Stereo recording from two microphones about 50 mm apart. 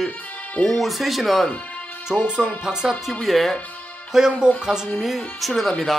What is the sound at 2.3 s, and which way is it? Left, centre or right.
Speech, centre.